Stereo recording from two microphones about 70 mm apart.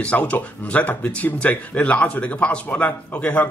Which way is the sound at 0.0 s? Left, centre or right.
Centre.